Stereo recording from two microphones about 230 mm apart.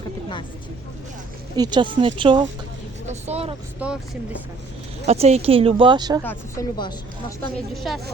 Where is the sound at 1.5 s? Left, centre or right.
Centre.